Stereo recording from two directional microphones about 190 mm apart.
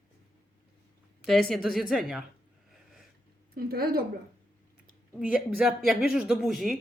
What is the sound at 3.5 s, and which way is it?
Speech, 50° right (ahead or behind).